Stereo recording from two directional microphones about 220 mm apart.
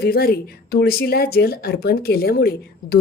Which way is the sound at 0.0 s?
45° left (ahead or behind).